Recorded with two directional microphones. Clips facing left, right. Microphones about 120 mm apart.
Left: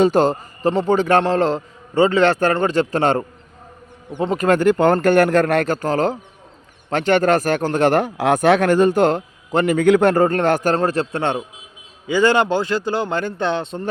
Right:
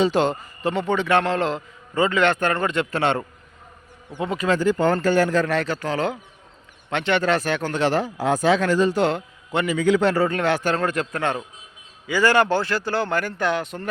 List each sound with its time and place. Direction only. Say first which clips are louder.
0.0 s a man's voice: left 5 dB; 45° left (ahead or behind)
9.7 s speech: left 5 dB; 55° left (ahead or behind)
10.8 s a man's voice: left 4 dB; 35° left (ahead or behind)